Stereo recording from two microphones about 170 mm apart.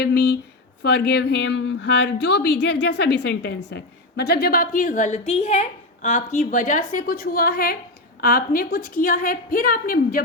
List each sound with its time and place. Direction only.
0.0 s a woman's voice: 70° left (ahead or behind)